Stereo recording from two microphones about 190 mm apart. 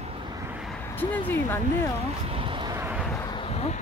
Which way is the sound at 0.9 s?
10° left (ahead or behind).